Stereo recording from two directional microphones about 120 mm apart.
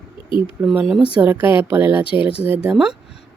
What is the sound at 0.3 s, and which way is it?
Speech, 45° left (ahead or behind).